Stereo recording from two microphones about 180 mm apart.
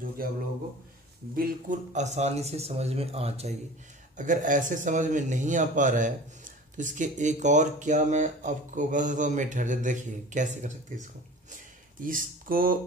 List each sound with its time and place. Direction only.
1.3 s speech: 50° right (ahead or behind)
4.2 s speech: 45° right (ahead or behind)
12.0 s speech: 50° right (ahead or behind)